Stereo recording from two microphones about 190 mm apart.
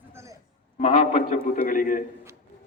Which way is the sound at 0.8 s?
40° left (ahead or behind).